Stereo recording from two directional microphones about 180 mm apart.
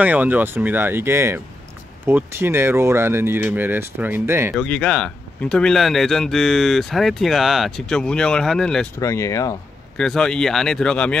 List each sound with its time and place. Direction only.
0.0 s speech: 10° right (ahead or behind)
4.6 s speech: 5° left (ahead or behind)
9.0 s speech: 15° left (ahead or behind)
9.9 s speech: 5° left (ahead or behind)